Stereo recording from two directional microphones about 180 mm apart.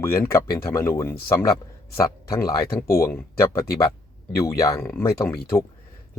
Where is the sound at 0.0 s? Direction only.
15° left (ahead or behind).